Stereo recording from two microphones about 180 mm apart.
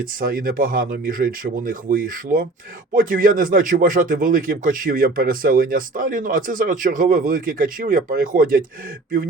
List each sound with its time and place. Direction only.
0.2 s speech: 50° right (ahead or behind)